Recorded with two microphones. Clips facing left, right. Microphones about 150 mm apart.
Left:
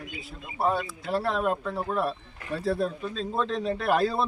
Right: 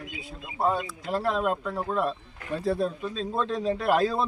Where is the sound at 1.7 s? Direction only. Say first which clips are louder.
Right 1 dB; 10° left (ahead or behind).